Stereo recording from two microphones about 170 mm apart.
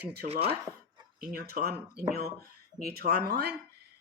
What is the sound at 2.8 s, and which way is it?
Speech, 65° right (ahead or behind).